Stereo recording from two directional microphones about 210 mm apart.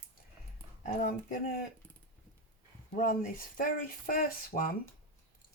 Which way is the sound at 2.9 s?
40° left (ahead or behind).